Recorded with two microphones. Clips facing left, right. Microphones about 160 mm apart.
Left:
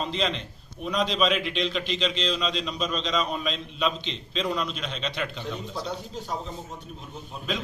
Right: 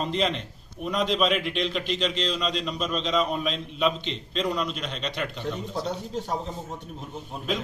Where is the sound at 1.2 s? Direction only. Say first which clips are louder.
Even; 5° right (ahead or behind).